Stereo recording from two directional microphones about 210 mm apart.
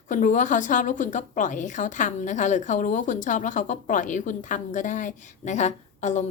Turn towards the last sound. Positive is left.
turn(degrees=35)  # may be behind; listen again after turning